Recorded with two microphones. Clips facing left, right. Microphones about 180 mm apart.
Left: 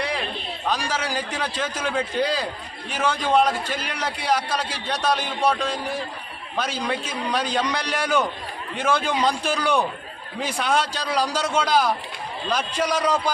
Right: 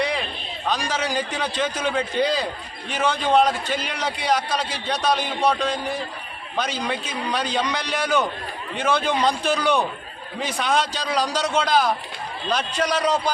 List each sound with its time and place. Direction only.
0.7 s a man's voice: 10° left (ahead or behind)